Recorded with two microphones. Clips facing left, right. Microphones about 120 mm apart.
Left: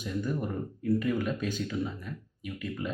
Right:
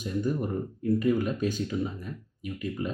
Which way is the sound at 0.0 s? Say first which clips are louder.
Right 3 dB; 30° right (ahead or behind).